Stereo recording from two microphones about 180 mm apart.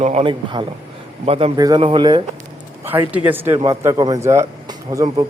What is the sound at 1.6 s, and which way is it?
Speech, 25° right (ahead or behind).